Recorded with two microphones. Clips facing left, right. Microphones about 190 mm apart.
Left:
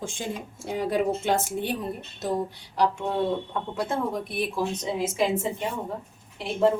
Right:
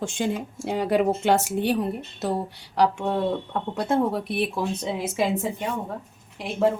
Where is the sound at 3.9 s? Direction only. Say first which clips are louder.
Right 7 dB; 65° right (ahead or behind).